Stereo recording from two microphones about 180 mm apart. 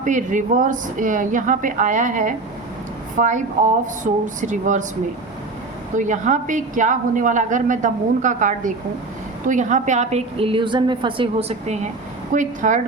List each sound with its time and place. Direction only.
0.0 s a woman's voice: 45° right (ahead or behind)
6.0 s a woman's voice: 45° right (ahead or behind)